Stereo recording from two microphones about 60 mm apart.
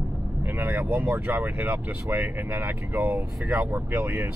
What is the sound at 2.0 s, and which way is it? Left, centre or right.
Speech, right.